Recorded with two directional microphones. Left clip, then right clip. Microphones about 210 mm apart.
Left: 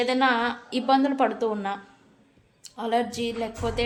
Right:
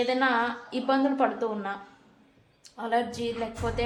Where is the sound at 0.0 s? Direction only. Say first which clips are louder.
Left 2 dB; 35° left (ahead or behind).